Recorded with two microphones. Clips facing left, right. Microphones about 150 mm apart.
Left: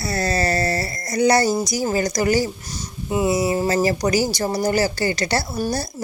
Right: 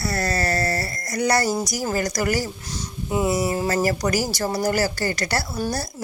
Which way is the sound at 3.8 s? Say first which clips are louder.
Left 3 dB; 25° left (ahead or behind).